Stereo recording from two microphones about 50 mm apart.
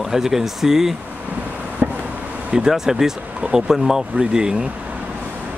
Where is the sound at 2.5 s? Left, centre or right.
Centre.